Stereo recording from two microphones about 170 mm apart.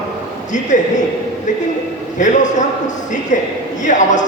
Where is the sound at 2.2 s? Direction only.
45° left (ahead or behind).